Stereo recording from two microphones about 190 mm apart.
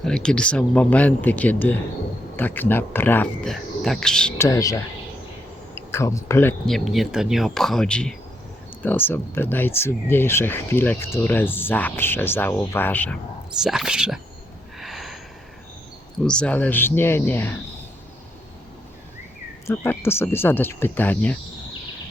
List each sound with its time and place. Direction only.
0.0 s speech: 5° left (ahead or behind)
4.4 s speech: 15° left (ahead or behind)
6.7 s speech: centre (ahead or behind)
13.6 s speech: centre (ahead or behind)
14.8 s a sound: centre (ahead or behind)
16.2 s speech: 5° left (ahead or behind)
19.6 s speech: 10° left (ahead or behind)